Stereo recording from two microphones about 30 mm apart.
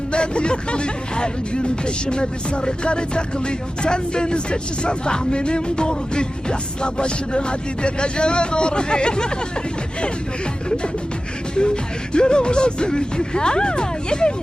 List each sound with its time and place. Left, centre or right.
0.1 s speech: left
11.5 s speech: left